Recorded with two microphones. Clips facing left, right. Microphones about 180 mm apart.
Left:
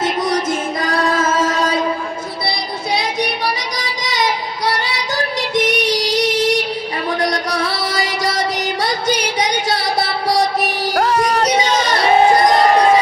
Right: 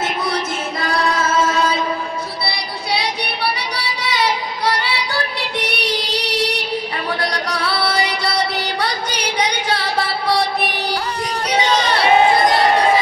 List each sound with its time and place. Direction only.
9.7 s music: 45° left (ahead or behind)
11.1 s music: 70° left (ahead or behind)